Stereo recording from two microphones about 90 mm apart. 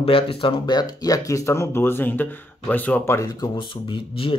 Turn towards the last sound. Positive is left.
turn(degrees=75)  # may be behind; listen again after turning